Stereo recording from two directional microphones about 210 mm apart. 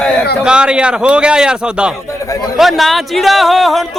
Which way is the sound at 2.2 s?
15° left (ahead or behind).